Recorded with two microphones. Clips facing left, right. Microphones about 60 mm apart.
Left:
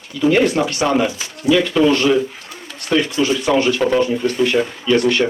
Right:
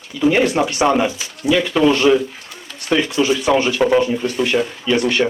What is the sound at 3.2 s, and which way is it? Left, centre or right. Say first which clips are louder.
Speech: right 2 dB; centre.